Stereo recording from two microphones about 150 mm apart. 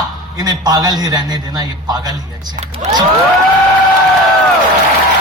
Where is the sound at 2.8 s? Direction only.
50° right (ahead or behind).